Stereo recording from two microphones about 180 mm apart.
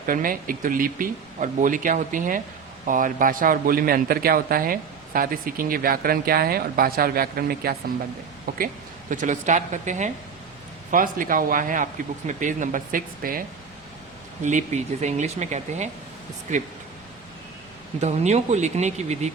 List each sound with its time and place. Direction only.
0.0 s a man's voice: 50° right (ahead or behind)
14.4 s speech: 40° right (ahead or behind)
18.0 s speech: 40° right (ahead or behind)